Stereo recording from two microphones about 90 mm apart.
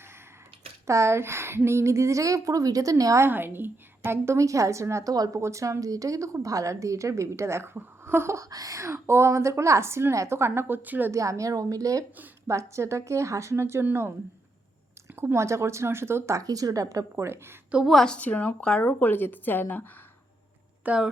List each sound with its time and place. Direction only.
0.9 s a woman's voice: 30° right (ahead or behind)
3.2 s a woman's voice: 25° right (ahead or behind)
11.1 s a woman's voice: 35° right (ahead or behind)
15.1 s a woman's voice: 25° right (ahead or behind)
17.8 s a woman's voice: 5° left (ahead or behind); by 19.8 s 20° left (ahead or behind)
20.8 s speech: 15° right (ahead or behind)